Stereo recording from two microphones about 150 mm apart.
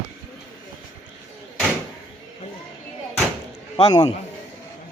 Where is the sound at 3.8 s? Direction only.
30° left (ahead or behind).